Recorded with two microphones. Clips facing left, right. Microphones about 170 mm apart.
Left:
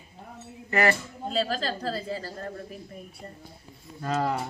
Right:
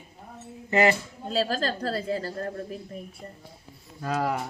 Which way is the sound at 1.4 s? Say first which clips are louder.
Right 2 dB; 40° right (ahead or behind).